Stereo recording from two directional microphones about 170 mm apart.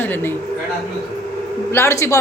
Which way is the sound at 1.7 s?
15° left (ahead or behind).